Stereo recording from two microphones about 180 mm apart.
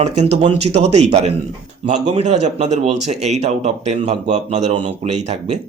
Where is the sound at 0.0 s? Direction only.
40° right (ahead or behind).